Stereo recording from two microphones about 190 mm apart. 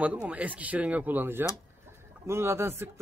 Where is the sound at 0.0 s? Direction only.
5° right (ahead or behind).